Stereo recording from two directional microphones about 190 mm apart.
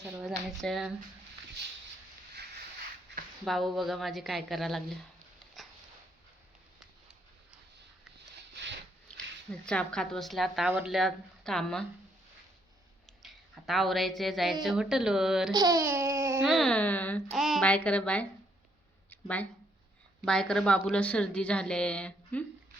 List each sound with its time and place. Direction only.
0.0 s a woman's voice: centre (ahead or behind)
3.1 s a sound: 65° right (ahead or behind)
3.4 s a woman's voice: centre (ahead or behind)
8.6 s a sound: 65° right (ahead or behind)
9.0 s speech: 5° left (ahead or behind)
10.7 s speech: 10° right (ahead or behind)
10.9 s a woman's voice: centre (ahead or behind)
13.2 s a woman's voice: centre (ahead or behind)
15.5 s a child's voice: 20° right (ahead or behind)
16.4 s a woman's voice: centre (ahead or behind)
19.1 s a sound: 10° left (ahead or behind)
20.2 s a woman's voice: 5° left (ahead or behind)